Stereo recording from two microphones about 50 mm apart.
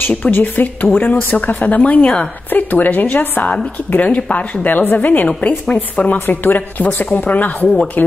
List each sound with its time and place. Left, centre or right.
0.3 s speech: left